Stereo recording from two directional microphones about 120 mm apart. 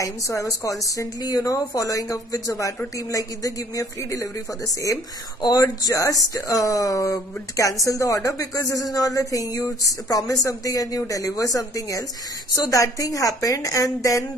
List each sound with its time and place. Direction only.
0.0 s speech: 25° left (ahead or behind)
5.4 s speech: 30° left (ahead or behind)